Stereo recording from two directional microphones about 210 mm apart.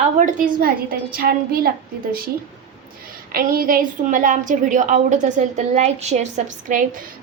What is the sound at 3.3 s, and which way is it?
A woman's voice, 45° right (ahead or behind).